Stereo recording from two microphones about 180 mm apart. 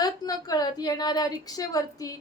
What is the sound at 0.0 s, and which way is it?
Speech, 20° left (ahead or behind).